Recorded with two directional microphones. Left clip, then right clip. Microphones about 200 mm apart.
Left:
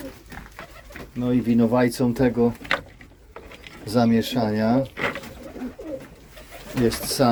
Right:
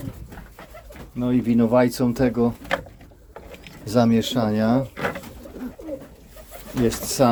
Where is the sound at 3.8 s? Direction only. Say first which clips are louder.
Right 1 dB; 20° right (ahead or behind).